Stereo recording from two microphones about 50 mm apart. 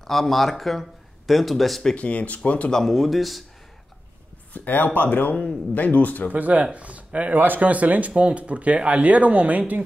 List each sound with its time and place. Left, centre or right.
0.0 s speech: centre
2.0 s speech: left
2.7 s speech: centre
4.6 s speech: left
6.3 s speech: right
7.3 s speech: right